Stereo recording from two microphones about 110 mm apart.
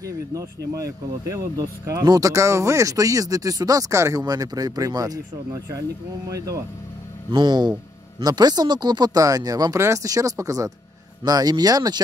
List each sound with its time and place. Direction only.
0.0 s speech: 30° right (ahead or behind)
7.2 s speech: 45° right (ahead or behind)